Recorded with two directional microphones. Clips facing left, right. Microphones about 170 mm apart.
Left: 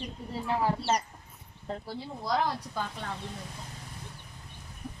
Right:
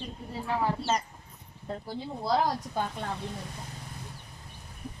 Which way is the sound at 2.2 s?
35° right (ahead or behind).